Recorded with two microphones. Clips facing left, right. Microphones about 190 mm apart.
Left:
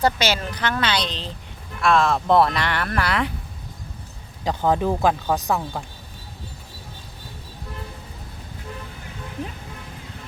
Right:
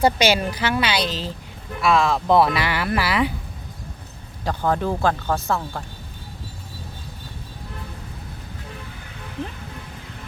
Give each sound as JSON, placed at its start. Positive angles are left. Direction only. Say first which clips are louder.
{"t": 0.0, "sound": "a woman's voice", "louder": "right 3 dB", "side_deg": -15}
{"t": 4.4, "sound": "speech", "louder": "left 2 dB", "side_deg": 15}